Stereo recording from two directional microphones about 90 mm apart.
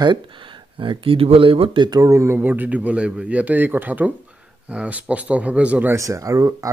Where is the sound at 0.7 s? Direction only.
80° right.